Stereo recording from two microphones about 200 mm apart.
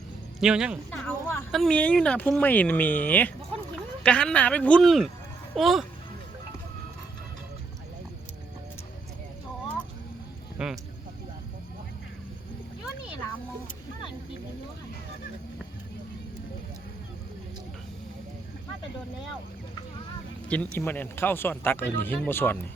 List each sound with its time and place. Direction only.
0.3 s speech: 5° right (ahead or behind)
0.9 s a sound: 10° left (ahead or behind)
1.5 s speech: centre (ahead or behind)
10.6 s speech: 5° right (ahead or behind)
20.5 s speech: 10° left (ahead or behind)